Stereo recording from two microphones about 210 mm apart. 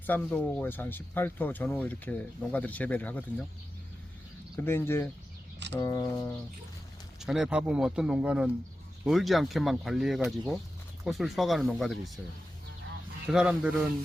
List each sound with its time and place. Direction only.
0.0 s speech: 10° left (ahead or behind)
4.6 s speech: 10° left (ahead or behind)
5.5 s a sound: 55° right (ahead or behind)
5.8 s speech: 15° left (ahead or behind)
7.2 s speech: centre (ahead or behind)
13.2 s speech: 5° right (ahead or behind)